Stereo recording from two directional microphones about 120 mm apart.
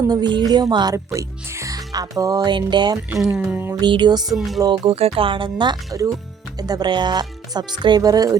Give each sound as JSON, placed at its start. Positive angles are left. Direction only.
{"t": 0.1, "sound": "speech", "side_deg": -35}
{"t": 0.9, "sound": "speech", "side_deg": -25}
{"t": 3.3, "sound": "a sound", "side_deg": -5}
{"t": 3.8, "sound": "speech", "side_deg": -40}
{"t": 4.2, "sound": "speech", "side_deg": 0}
{"t": 4.6, "sound": "speech", "side_deg": -35}
{"t": 4.9, "sound": "speech", "side_deg": -55}